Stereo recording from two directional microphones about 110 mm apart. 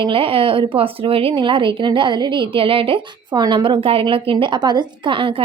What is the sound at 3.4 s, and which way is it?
Speech, 40° right (ahead or behind).